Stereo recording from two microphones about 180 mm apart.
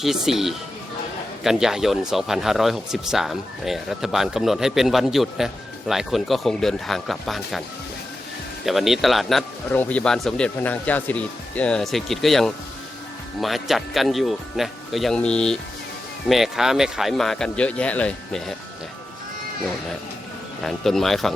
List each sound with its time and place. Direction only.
0.0 s speech: centre (ahead or behind)
8.6 s speech: centre (ahead or behind)
20.7 s speech: centre (ahead or behind)